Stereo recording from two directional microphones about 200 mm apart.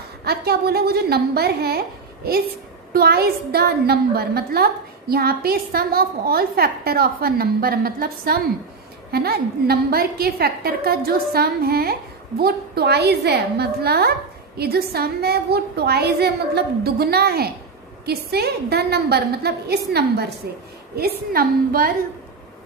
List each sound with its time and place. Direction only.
0.2 s a woman's voice: 50° right (ahead or behind)
2.9 s a woman's voice: 50° right (ahead or behind)